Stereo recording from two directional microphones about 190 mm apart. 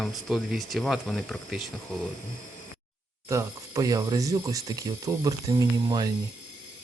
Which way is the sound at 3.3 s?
15° right (ahead or behind).